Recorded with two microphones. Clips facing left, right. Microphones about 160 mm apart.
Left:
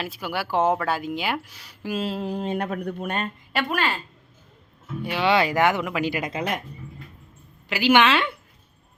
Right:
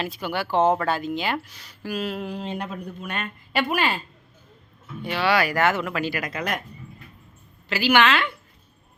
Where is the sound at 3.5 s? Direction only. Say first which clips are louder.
Right 3 dB; centre (ahead or behind).